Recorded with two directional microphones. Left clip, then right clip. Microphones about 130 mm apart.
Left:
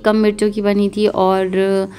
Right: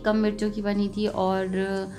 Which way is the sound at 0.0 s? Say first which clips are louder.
Left 10 dB; 40° left (ahead or behind).